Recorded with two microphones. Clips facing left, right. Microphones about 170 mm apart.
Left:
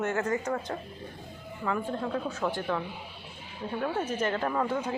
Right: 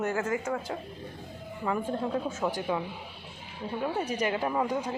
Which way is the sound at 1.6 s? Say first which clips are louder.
Right 1 dB; 20° right (ahead or behind).